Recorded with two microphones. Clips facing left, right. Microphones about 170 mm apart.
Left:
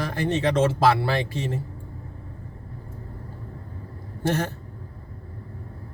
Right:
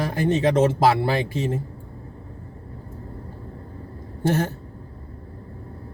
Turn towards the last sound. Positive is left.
turn(degrees=-15)  # may be behind; listen again after turning